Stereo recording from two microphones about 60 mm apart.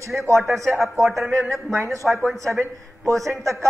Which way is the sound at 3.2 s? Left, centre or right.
Right.